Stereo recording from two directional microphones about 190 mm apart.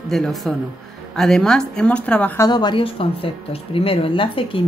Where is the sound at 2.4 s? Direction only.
20° left (ahead or behind).